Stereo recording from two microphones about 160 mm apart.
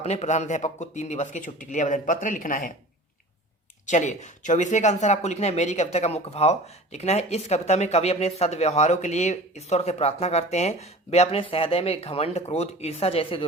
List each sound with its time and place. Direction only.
0.0 s speech: 45° left (ahead or behind)
3.8 s speech: 45° left (ahead or behind)